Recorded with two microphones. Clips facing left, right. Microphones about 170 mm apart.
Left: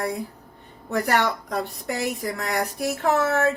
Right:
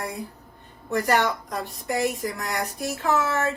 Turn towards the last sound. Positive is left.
turn(degrees=60)  # may be behind; listen again after turning